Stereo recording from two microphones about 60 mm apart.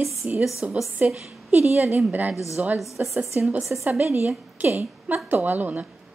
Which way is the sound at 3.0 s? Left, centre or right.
Centre.